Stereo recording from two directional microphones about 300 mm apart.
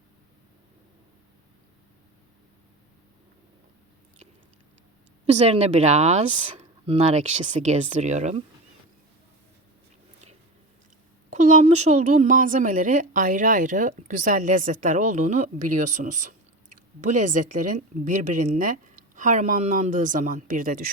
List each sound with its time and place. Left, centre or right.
5.2 s a woman's voice: right
11.3 s a woman's voice: right